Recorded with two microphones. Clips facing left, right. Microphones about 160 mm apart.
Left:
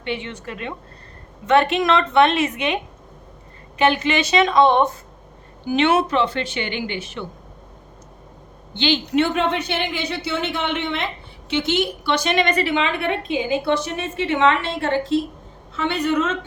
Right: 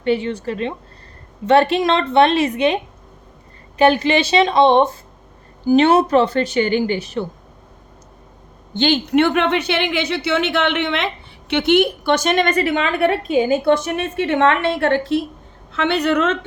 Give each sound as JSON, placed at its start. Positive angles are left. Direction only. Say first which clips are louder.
{"t": 0.0, "sound": "speech", "louder": "right 9 dB", "side_deg": -40}
{"t": 3.8, "sound": "speech", "louder": "right 4 dB", "side_deg": -35}
{"t": 8.7, "sound": "speech", "louder": "right 4 dB", "side_deg": -50}
{"t": 15.7, "sound": "a woman's voice", "louder": "right 3 dB", "side_deg": -75}